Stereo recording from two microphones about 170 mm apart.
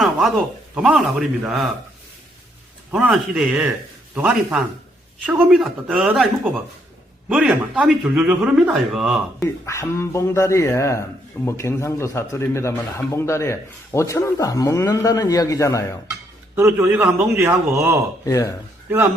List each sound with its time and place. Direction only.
0.0 s a sound: centre (ahead or behind)
0.8 s a man's voice: centre (ahead or behind)
2.9 s a man's voice: 5° right (ahead or behind)
9.4 s speech: 15° left (ahead or behind)
16.6 s a man's voice: 15° right (ahead or behind)
18.3 s speech: 20° left (ahead or behind)
18.9 s a man's voice: 10° right (ahead or behind)